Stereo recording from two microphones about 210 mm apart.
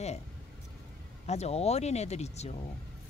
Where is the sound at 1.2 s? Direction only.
30° left (ahead or behind).